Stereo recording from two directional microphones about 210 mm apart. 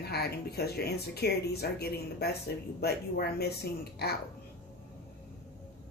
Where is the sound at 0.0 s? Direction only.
50° left (ahead or behind).